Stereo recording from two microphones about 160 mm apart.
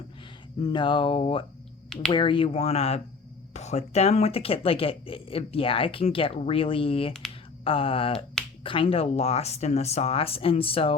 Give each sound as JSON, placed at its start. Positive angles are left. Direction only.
{"t": 0.6, "sound": "speech", "side_deg": 30}
{"t": 1.9, "sound": "speech", "side_deg": 5}
{"t": 2.1, "sound": "speech", "side_deg": 30}